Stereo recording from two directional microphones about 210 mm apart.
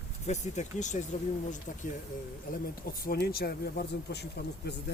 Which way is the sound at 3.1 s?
45° left (ahead or behind).